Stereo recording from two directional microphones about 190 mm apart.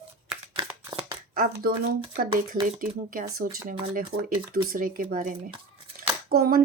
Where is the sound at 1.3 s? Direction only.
50° right (ahead or behind).